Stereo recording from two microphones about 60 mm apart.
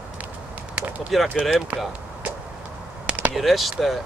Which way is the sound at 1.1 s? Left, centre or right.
Centre.